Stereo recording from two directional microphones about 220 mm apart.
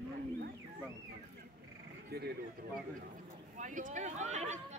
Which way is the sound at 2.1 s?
45° right (ahead or behind).